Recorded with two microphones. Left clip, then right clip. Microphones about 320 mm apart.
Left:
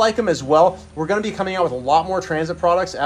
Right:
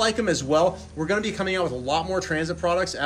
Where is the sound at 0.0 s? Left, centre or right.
Centre.